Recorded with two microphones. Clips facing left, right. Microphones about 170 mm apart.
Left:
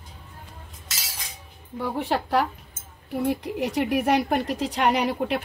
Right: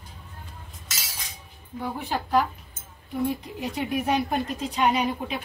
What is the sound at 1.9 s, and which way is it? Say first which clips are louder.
A woman's voice: left 1 dB; 70° left (ahead or behind).